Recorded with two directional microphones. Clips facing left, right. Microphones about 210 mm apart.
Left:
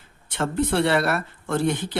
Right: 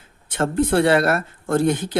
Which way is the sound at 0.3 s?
45° right (ahead or behind).